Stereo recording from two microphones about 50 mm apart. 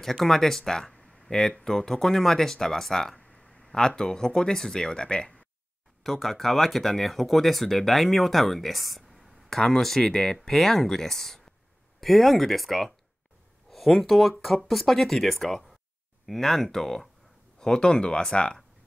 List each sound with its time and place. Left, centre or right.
0.0 s speech: centre
6.0 s speech: centre